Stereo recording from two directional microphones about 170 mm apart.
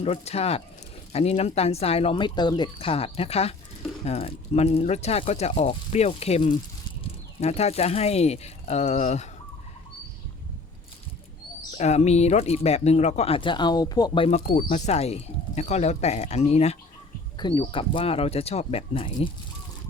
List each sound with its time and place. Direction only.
0.0 s speech: 35° left (ahead or behind)
11.8 s speech: 40° left (ahead or behind)
14.4 s speech: 55° left (ahead or behind); by 16.7 s 40° left (ahead or behind)
17.3 s speech: 25° left (ahead or behind)